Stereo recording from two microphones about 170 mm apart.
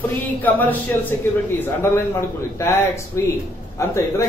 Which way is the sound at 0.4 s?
10° left (ahead or behind).